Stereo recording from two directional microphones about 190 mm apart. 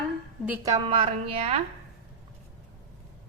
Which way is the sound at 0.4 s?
15° right (ahead or behind).